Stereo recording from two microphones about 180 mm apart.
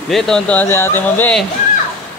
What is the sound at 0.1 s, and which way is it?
Speech, 5° left (ahead or behind).